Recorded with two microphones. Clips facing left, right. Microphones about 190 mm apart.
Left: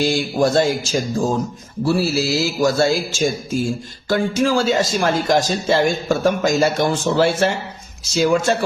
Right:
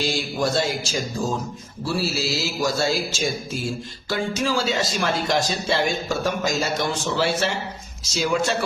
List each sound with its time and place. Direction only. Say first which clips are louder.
0.0 s speech: left 6 dB; 50° left (ahead or behind)